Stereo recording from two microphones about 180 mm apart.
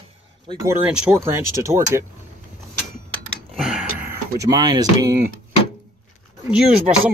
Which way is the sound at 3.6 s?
5° right (ahead or behind).